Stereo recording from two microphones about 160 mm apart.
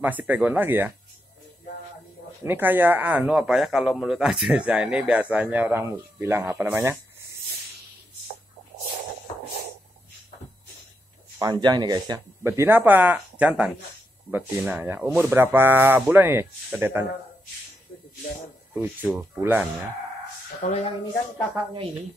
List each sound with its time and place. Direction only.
0.0 s a man's voice: 10° right (ahead or behind)
2.4 s a man's voice: 10° right (ahead or behind)
11.5 s a man's voice: 25° right (ahead or behind); by 17.1 s 10° right (ahead or behind)
18.8 s a man's voice: 15° right (ahead or behind)
20.6 s speech: 50° left (ahead or behind)